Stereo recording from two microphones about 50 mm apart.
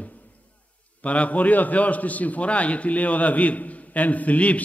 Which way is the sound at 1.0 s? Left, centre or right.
Left.